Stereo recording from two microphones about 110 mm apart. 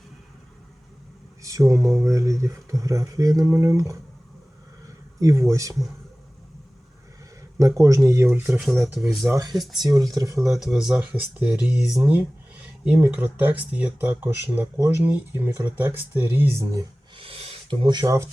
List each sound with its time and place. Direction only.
1.4 s speech: 30° right (ahead or behind)
5.2 s speech: 30° right (ahead or behind)
7.8 s speech: 30° right (ahead or behind)
8.3 s speech: 15° right (ahead or behind)
9.2 s speech: 30° right (ahead or behind)
10.5 s speech: 5° right (ahead or behind); by 16.8 s 25° right (ahead or behind)
17.2 s a sound: 55° right (ahead or behind); by 18.1 s 40° right (ahead or behind)